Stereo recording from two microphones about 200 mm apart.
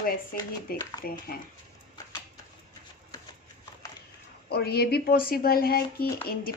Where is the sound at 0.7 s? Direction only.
50° left (ahead or behind).